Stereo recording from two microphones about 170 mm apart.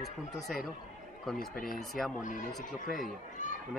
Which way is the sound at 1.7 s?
Centre (ahead or behind).